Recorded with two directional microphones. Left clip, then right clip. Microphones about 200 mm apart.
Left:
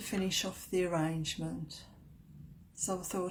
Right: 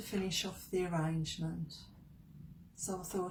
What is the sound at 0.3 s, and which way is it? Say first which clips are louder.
Speech: left 3 dB; 40° left (ahead or behind).